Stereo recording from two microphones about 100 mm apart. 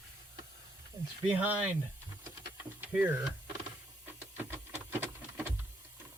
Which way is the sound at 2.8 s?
15° right (ahead or behind).